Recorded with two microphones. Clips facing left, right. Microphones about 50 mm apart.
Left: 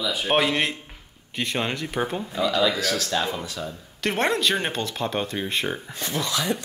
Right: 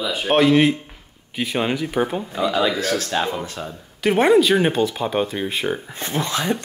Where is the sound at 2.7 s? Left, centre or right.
Right.